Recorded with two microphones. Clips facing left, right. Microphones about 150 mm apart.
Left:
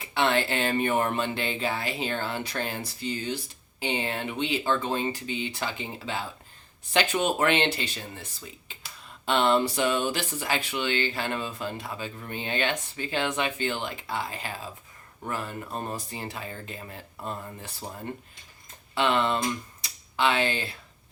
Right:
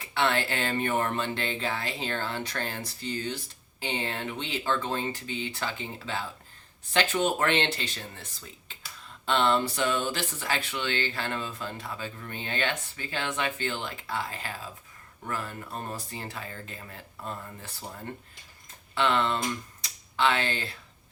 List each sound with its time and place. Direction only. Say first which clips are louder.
0.0 s speech: left 2 dB; 15° left (ahead or behind)
9.2 s speech: left 2 dB; 15° left (ahead or behind)
18.9 s speech: left 2 dB; 15° left (ahead or behind)